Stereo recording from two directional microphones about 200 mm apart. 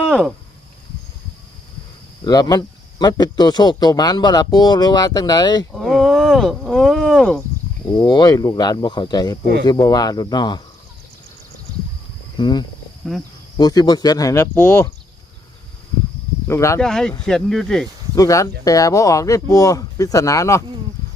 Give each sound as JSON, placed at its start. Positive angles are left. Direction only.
{"t": 2.2, "sound": "speech", "side_deg": 20}
{"t": 5.7, "sound": "a sound", "side_deg": 0}
{"t": 7.9, "sound": "speech", "side_deg": 20}
{"t": 12.4, "sound": "speech", "side_deg": 20}
{"t": 13.1, "sound": "speech", "side_deg": 5}
{"t": 13.6, "sound": "speech", "side_deg": 20}
{"t": 16.5, "sound": "speech", "side_deg": 15}
{"t": 16.8, "sound": "speech", "side_deg": 5}
{"t": 18.1, "sound": "speech", "side_deg": 15}